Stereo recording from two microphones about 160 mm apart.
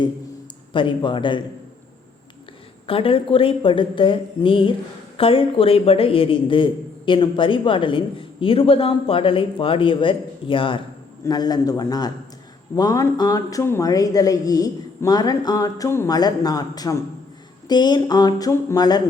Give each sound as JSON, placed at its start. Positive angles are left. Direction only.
{"t": 0.7, "sound": "a man's voice", "side_deg": 30}
{"t": 2.8, "sound": "a man's voice", "side_deg": 35}